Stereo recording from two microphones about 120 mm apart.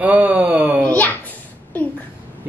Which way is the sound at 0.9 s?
15° left (ahead or behind).